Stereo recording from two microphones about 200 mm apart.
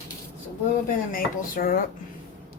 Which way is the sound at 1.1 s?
45° left (ahead or behind).